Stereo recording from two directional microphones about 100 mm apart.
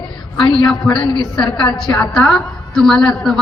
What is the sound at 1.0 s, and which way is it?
Speech, 55° left (ahead or behind).